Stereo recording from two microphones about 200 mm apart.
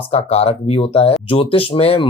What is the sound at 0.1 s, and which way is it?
Speech, 30° left (ahead or behind).